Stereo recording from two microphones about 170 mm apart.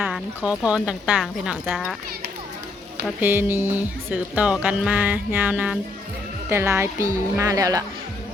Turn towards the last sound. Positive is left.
turn(degrees=-20)  # may be behind; listen again after turning